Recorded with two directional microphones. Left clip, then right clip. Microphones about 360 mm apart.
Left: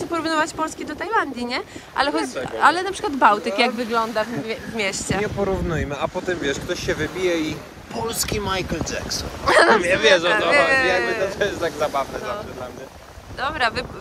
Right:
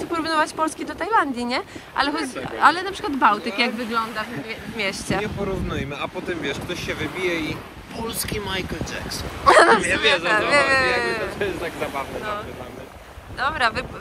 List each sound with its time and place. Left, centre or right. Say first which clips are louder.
0.1 s speech: even; centre
5.2 s speech: left 4 dB; left
9.4 s speech: right 2 dB; centre
9.8 s speech: left 3 dB; left
10.7 s speech: left 1 dB; centre
11.3 s speech: left 3 dB; left
13.4 s speech: right 1 dB; centre